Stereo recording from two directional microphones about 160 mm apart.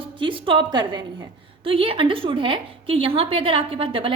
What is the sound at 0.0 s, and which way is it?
A woman's voice, 30° right (ahead or behind).